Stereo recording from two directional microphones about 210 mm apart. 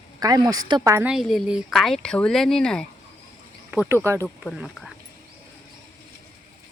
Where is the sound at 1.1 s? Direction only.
Centre (ahead or behind).